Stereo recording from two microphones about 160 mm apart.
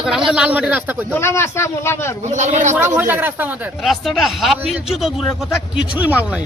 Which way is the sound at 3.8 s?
Centre (ahead or behind).